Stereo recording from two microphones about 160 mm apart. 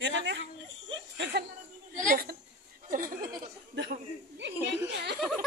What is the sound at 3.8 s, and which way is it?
Speech, 90° right.